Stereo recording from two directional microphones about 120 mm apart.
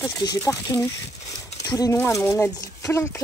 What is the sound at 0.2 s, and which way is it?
Speech, 35° left (ahead or behind).